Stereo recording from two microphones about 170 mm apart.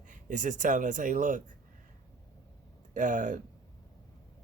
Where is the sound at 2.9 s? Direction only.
45° right (ahead or behind).